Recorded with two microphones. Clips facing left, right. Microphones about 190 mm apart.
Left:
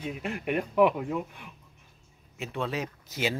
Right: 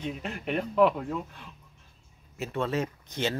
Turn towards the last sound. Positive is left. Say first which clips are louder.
# even
turn(degrees=5)  # may be behind; listen again after turning